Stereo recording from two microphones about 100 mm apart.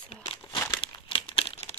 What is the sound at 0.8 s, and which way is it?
Crumpling, 60° left (ahead or behind).